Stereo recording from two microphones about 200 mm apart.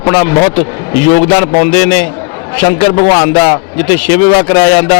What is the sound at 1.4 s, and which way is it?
A man's voice, 15° left (ahead or behind).